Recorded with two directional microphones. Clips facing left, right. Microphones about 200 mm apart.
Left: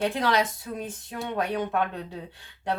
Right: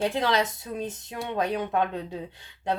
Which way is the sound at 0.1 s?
25° right (ahead or behind).